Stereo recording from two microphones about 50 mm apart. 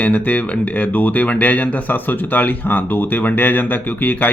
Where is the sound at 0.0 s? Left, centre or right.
Left.